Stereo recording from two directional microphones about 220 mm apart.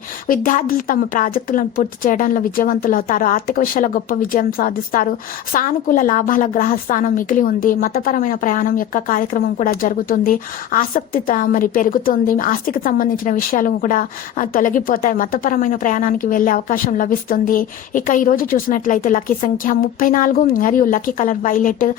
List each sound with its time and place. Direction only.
0.3 s a woman's voice: 40° left (ahead or behind)